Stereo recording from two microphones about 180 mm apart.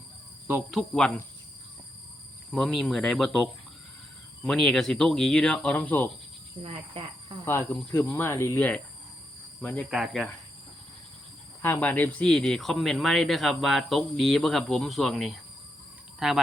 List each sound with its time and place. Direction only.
0.4 s speech: 5° right (ahead or behind)
2.5 s speech: centre (ahead or behind)
6.6 s speech: 30° right (ahead or behind)
7.4 s speech: 10° left (ahead or behind)
11.6 s speech: 10° left (ahead or behind)